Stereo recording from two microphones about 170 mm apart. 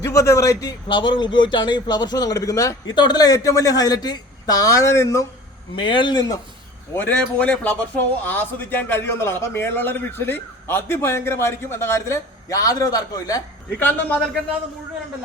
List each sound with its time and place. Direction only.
0.0 s a man's voice: 20° left (ahead or behind)
5.7 s a man's voice: 30° left (ahead or behind)
6.9 s a man's voice: 10° left (ahead or behind)
13.7 s a man's voice: 10° left (ahead or behind)